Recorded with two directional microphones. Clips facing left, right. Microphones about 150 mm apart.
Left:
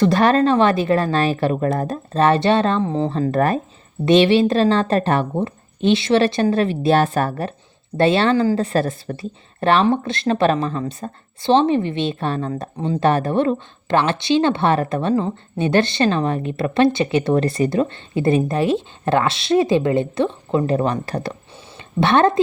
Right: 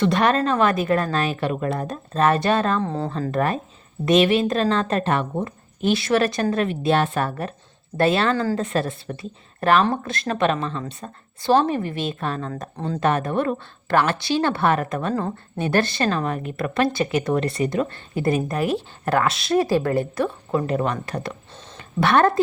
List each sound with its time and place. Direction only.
0.0 s speech: 35° left (ahead or behind)
2.8 s speech: 15° left (ahead or behind)
3.1 s speech: 35° left (ahead or behind)
5.3 s a woman's voice: 25° left (ahead or behind)
7.9 s a woman's voice: 25° left (ahead or behind)
9.6 s speech: 25° left (ahead or behind)
11.4 s a woman's voice: 25° left (ahead or behind)
12.5 s a woman's voice: 20° left (ahead or behind)
15.1 s a woman's voice: 20° left (ahead or behind); by 21.3 s 35° left (ahead or behind)
22.0 s a woman's voice: 25° left (ahead or behind)